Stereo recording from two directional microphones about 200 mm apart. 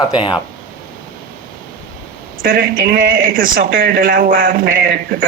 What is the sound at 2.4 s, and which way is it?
Speech, 45° right (ahead or behind).